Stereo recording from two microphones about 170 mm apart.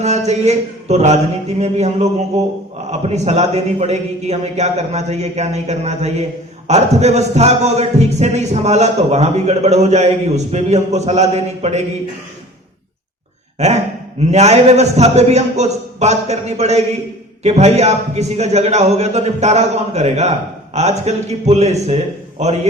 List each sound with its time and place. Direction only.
0.0 s speech: 40° right (ahead or behind)
13.6 s speech: 40° right (ahead or behind)